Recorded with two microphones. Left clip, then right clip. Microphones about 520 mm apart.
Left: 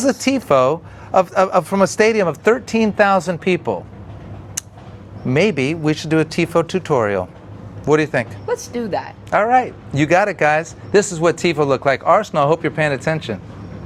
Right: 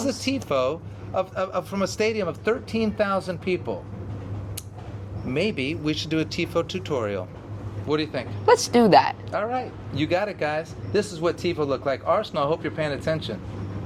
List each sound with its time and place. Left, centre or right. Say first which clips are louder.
0.4 s a man's voice: left 10 dB; left
5.3 s a man's voice: left 9 dB; left
8.4 s speech: right 5 dB; right
9.3 s speech: left 12 dB; left